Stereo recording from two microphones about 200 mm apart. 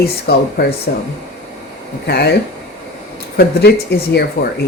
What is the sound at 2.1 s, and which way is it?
Speech, 55° left (ahead or behind).